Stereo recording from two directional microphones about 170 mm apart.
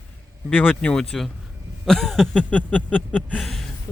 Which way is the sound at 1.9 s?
Centre (ahead or behind).